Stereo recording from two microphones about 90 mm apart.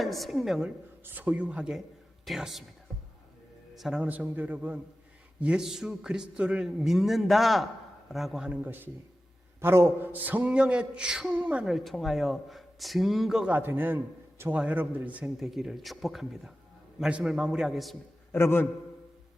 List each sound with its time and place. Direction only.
0.0 s a man's voice: centre (ahead or behind)
1.0 s a man's voice: 20° right (ahead or behind); by 2.6 s centre (ahead or behind)
3.8 s a man's voice: 5° right (ahead or behind)
4.0 s a man's voice: 15° right (ahead or behind)
8.6 s a man's voice: 20° right (ahead or behind)
11.6 s a man's voice: centre (ahead or behind)
13.5 s a man's voice: 20° right (ahead or behind)
15.4 s a man's voice: centre (ahead or behind)
18.3 s a man's voice: 25° left (ahead or behind)